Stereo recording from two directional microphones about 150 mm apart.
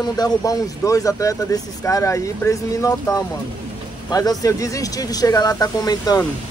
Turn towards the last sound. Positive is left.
turn(degrees=25)  # may be behind; listen again after turning